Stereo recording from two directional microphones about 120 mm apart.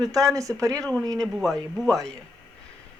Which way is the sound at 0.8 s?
5° left (ahead or behind).